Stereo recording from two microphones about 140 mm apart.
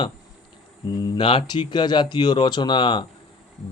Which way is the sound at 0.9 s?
30° left (ahead or behind).